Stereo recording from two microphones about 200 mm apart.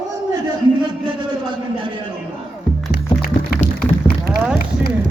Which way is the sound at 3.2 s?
45° left (ahead or behind).